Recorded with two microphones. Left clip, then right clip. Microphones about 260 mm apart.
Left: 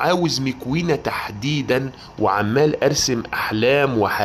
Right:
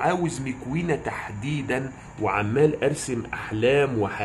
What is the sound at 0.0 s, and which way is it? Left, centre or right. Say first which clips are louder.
Speech: left 6 dB; left.